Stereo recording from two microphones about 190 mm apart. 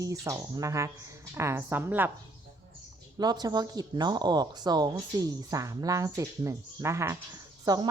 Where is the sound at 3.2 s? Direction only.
20° right (ahead or behind).